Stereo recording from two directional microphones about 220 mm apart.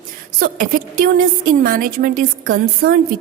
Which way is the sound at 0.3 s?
40° right (ahead or behind).